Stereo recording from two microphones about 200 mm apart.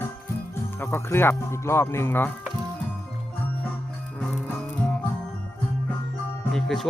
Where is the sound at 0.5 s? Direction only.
10° left (ahead or behind).